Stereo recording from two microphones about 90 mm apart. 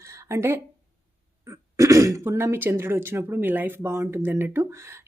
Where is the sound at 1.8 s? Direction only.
35° right (ahead or behind).